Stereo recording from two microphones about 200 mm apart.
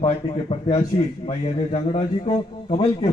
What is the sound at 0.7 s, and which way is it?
A man's voice, 30° left (ahead or behind).